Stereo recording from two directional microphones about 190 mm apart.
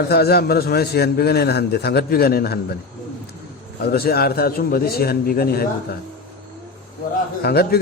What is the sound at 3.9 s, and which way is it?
A man's voice, 55° left (ahead or behind).